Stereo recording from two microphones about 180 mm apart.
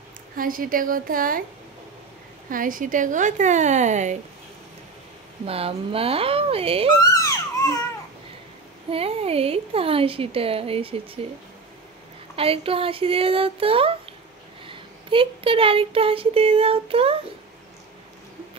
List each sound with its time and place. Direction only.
0.4 s a woman's voice: 50° right (ahead or behind)
2.5 s a woman's voice: 50° right (ahead or behind)
5.4 s speech: 30° right (ahead or behind)
7.0 s crying: 20° left (ahead or behind)
8.9 s speech: 35° right (ahead or behind)
12.4 s speech: 30° right (ahead or behind)